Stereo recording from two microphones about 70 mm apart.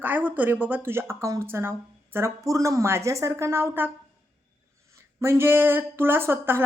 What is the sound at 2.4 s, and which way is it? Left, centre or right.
A woman's voice, right.